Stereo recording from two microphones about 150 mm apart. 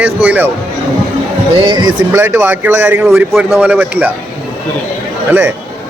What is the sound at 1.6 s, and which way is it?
Speech, 30° right (ahead or behind).